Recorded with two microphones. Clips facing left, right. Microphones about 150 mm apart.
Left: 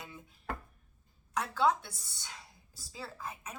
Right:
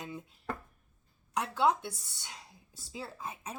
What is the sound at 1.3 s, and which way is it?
Speech, 20° right (ahead or behind).